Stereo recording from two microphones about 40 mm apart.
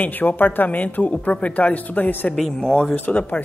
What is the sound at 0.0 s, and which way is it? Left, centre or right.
A man's voice, left.